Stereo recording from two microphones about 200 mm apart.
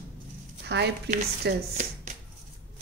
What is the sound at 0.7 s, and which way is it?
Speech, 55° right (ahead or behind).